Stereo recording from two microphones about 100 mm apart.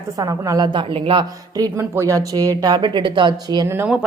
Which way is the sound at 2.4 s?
40° right (ahead or behind).